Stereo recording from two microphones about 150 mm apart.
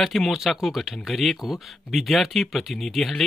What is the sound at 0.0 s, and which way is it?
Speech, centre (ahead or behind).